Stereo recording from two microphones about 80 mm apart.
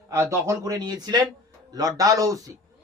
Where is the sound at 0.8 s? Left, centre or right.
Right.